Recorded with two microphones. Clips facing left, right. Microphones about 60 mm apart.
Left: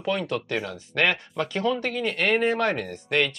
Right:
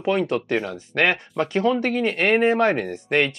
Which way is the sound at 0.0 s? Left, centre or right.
Right.